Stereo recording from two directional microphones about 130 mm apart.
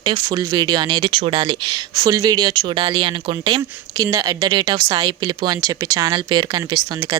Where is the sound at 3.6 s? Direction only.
25° right (ahead or behind).